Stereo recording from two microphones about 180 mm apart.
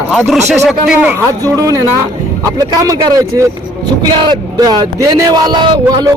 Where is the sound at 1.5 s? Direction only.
20° right (ahead or behind).